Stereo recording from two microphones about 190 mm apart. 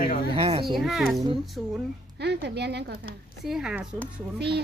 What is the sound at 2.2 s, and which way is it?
Speech, 60° right (ahead or behind).